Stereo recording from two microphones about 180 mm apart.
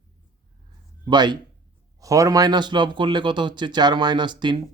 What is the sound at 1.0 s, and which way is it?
Speech, 25° right (ahead or behind).